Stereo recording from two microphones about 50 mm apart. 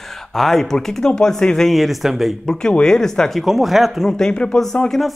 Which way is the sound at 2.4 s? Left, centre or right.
Centre.